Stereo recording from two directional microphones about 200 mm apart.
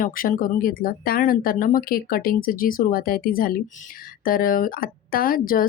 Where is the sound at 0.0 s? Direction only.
45° left (ahead or behind).